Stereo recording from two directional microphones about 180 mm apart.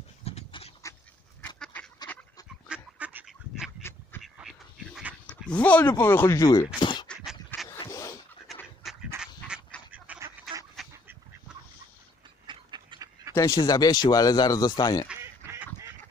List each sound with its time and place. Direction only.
0.2 s dog: 35° left (ahead or behind)
1.6 s goose: 10° left (ahead or behind)
2.1 s duck: 10° left (ahead or behind)
2.7 s duck: 10° right (ahead or behind)
5.3 s speech: 10° left (ahead or behind); by 7.1 s 25° left (ahead or behind)
7.8 s a sound: 20° left (ahead or behind)
8.5 s duck: centre (ahead or behind)
9.1 s a sound: 5° right (ahead or behind)
9.8 s duck: 10° right (ahead or behind)
12.4 s duck: 25° right (ahead or behind)
13.3 s speech: 20° left (ahead or behind)
15.0 s duck: 10° right (ahead or behind)